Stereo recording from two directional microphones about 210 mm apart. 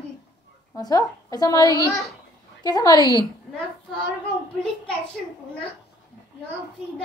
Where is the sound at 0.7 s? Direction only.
15° left (ahead or behind).